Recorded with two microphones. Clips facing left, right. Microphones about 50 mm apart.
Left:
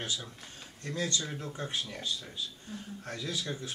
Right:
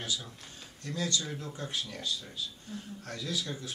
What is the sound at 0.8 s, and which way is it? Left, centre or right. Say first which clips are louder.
Speech: even; left.